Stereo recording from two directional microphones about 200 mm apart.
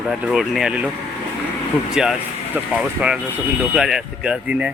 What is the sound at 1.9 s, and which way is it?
Speech, 5° right (ahead or behind).